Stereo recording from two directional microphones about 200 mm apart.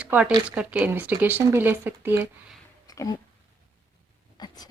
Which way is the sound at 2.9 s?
20° left (ahead or behind).